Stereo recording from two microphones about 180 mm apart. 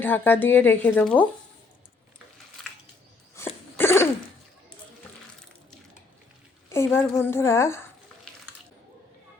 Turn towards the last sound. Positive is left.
turn(degrees=15)  # may be behind; listen again after turning